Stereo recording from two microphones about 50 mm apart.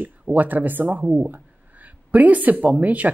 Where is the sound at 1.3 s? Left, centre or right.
Right.